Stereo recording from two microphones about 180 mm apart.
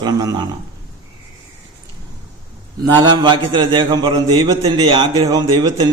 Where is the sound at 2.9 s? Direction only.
25° right (ahead or behind).